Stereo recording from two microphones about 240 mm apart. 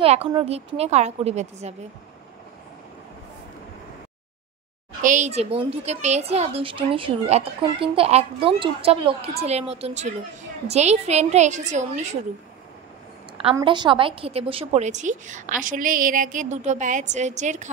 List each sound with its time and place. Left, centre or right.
0.0 s a woman's voice: right
5.0 s a woman's voice: right
13.4 s a woman's voice: right